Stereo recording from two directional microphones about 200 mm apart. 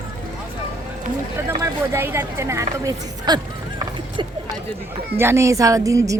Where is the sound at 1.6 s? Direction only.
10° right (ahead or behind).